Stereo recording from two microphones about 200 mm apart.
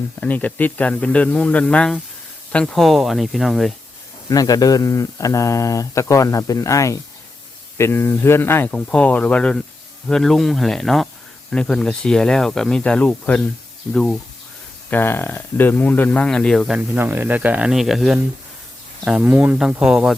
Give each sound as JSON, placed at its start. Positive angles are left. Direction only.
{"t": 0.2, "sound": "speech", "side_deg": 10}
{"t": 4.3, "sound": "speech", "side_deg": 20}